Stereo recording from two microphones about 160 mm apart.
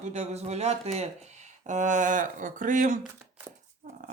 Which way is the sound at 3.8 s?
65° right (ahead or behind).